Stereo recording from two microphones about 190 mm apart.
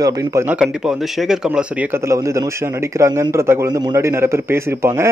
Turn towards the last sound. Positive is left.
turn(degrees=-15)  # may be behind; listen again after turning